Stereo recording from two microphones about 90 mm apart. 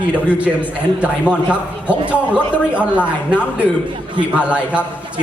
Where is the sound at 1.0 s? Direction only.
15° right (ahead or behind).